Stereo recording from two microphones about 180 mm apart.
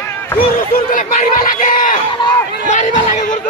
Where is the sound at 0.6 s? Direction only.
50° left (ahead or behind).